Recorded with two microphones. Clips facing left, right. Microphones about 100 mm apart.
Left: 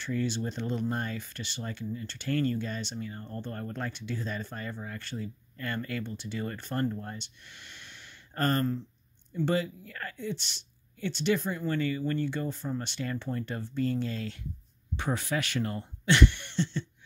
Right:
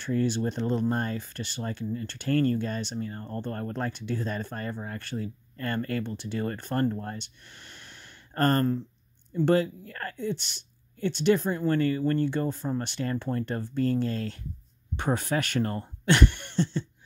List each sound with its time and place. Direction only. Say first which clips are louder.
0.0 s speech: right 5 dB; 45° right (ahead or behind)